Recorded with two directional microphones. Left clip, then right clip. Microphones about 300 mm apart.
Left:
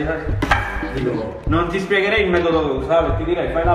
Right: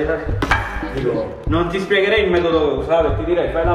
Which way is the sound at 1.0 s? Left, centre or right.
Centre.